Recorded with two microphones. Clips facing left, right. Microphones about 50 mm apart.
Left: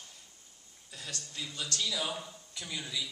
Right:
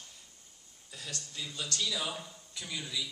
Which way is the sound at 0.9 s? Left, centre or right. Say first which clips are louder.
Even; left.